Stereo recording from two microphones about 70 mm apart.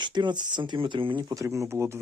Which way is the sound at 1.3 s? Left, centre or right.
Right.